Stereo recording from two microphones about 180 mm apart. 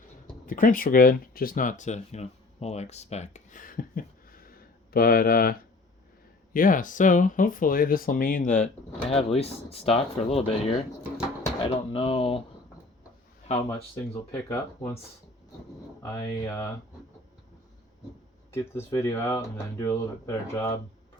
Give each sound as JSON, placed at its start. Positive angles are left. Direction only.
{"t": 0.4, "sound": "speech", "side_deg": 50}
{"t": 11.6, "sound": "speech", "side_deg": 30}
{"t": 13.5, "sound": "speech", "side_deg": 35}
{"t": 13.9, "sound": "speech", "side_deg": 15}
{"t": 16.0, "sound": "speech", "side_deg": 15}
{"t": 18.5, "sound": "speech", "side_deg": 15}